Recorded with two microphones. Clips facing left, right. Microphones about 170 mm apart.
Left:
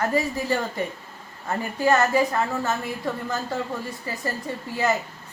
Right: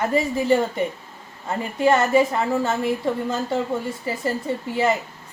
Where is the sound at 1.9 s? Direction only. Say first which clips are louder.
Right 1 dB; 25° right (ahead or behind).